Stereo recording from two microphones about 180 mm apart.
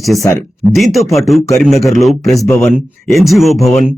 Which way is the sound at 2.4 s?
15° left (ahead or behind).